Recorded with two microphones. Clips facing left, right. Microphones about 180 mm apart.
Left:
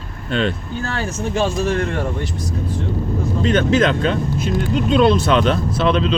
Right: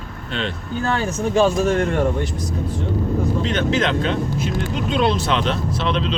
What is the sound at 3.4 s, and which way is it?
Speech, 45° left (ahead or behind).